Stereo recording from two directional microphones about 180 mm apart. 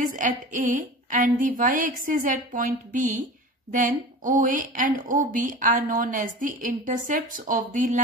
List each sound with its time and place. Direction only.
0.0 s a woman's voice: 45° right (ahead or behind)